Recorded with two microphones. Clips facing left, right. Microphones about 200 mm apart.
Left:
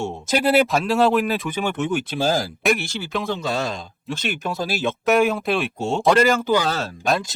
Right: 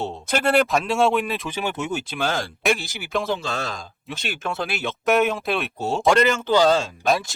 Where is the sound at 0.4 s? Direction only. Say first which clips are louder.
Left 1 dB; 5° left (ahead or behind).